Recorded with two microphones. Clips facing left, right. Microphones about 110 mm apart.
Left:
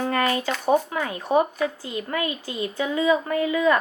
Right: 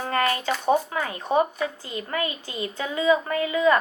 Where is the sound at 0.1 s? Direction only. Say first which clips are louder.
Right 3 dB; 30° right (ahead or behind).